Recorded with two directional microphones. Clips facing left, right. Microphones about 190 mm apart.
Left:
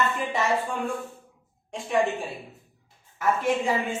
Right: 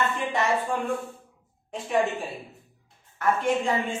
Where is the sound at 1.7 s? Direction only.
Centre (ahead or behind).